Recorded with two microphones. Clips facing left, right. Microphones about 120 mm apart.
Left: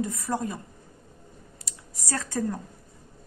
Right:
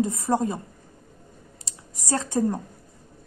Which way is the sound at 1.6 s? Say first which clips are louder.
Right 4 dB; 20° right (ahead or behind).